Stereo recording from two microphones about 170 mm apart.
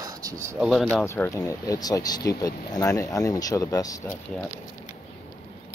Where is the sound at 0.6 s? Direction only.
Centre (ahead or behind).